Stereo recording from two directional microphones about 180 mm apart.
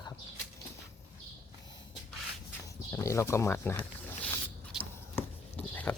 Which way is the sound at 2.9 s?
15° left (ahead or behind).